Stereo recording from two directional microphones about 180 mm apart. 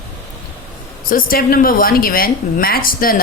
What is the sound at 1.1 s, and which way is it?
A woman's voice, 55° left (ahead or behind).